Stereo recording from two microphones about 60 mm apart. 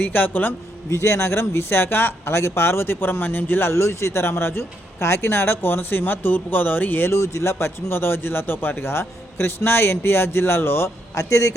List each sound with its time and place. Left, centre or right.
0.0 s speech: left
0.9 s speech: left
7.1 s speech: left
11.1 s a man's voice: left